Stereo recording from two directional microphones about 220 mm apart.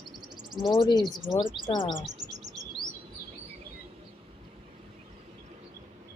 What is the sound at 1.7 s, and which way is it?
Speech, centre (ahead or behind).